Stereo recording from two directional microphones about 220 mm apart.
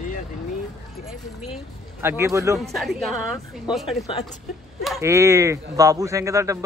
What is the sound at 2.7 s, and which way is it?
Speech, centre (ahead or behind).